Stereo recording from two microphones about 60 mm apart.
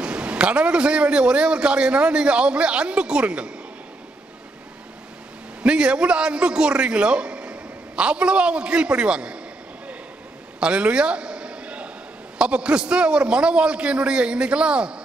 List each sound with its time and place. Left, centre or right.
0.0 s a man's voice: centre
5.6 s a man's voice: centre
10.6 s a sound: centre
12.4 s a man's voice: centre